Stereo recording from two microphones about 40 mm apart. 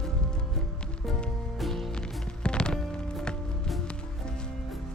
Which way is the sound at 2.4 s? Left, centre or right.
Left.